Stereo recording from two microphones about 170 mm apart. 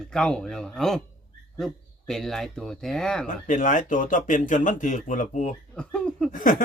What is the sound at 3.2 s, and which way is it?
Speech, 50° left (ahead or behind).